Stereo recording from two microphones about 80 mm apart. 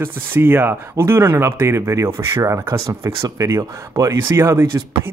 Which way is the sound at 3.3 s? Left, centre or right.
Right.